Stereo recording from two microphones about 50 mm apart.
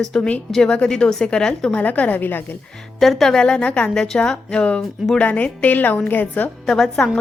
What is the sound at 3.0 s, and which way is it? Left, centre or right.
Speech, centre.